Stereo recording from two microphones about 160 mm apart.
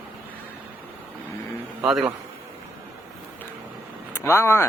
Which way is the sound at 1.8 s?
Centre (ahead or behind).